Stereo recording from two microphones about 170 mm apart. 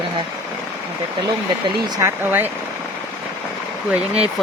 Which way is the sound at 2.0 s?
10° right (ahead or behind).